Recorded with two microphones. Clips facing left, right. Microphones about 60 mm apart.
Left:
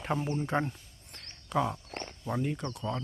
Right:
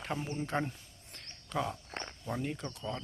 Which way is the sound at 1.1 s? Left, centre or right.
Centre.